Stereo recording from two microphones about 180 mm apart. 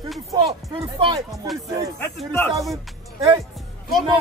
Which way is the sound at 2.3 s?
10° left (ahead or behind).